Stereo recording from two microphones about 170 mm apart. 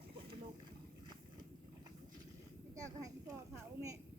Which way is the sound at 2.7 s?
20° right (ahead or behind).